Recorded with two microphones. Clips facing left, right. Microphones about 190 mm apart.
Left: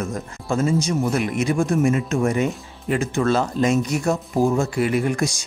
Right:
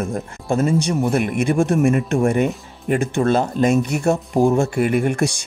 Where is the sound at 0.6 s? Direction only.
55° right (ahead or behind).